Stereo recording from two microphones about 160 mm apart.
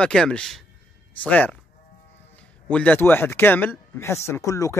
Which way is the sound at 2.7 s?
10° left (ahead or behind).